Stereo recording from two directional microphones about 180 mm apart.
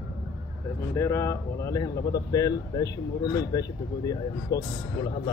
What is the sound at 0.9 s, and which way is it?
Speech, 15° left (ahead or behind).